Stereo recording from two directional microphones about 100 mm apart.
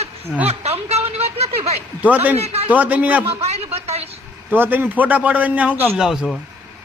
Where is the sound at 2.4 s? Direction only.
90° right.